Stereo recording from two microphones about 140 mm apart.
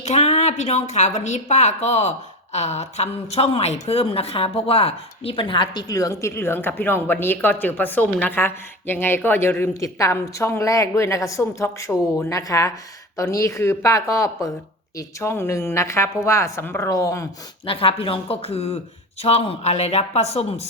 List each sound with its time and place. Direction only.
0.0 s a woman's voice: 50° left (ahead or behind); by 17.2 s 25° left (ahead or behind)
17.7 s speech: 40° left (ahead or behind)